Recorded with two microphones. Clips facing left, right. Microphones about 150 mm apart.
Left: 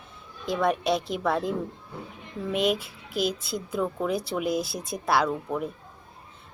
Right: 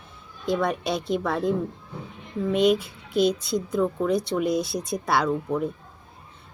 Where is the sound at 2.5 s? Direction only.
Centre (ahead or behind).